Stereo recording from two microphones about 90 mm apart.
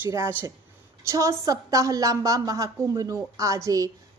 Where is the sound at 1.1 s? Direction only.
40° right (ahead or behind).